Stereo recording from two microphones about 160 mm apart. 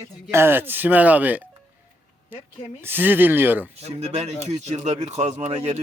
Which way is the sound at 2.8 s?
15° right (ahead or behind).